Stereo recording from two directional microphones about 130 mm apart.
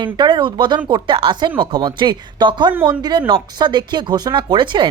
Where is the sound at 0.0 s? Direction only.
40° right (ahead or behind).